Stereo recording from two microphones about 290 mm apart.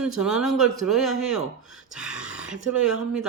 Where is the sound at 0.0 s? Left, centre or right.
Centre.